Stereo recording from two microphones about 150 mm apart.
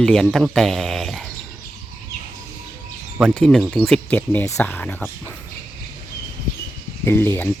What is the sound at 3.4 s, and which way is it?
Speech, centre (ahead or behind).